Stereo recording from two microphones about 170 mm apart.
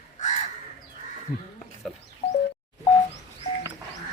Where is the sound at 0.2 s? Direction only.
45° left (ahead or behind).